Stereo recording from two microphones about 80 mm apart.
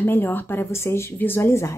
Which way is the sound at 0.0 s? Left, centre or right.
Left.